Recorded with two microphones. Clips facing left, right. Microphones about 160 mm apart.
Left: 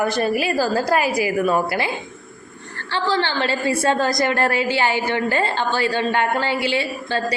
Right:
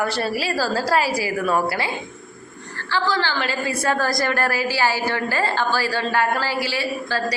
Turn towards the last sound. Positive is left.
turn(degrees=25)  # may be behind; listen again after turning